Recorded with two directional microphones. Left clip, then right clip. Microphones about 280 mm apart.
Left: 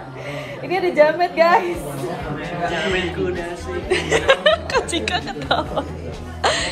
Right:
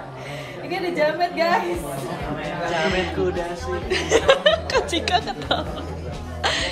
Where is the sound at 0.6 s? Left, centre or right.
Centre.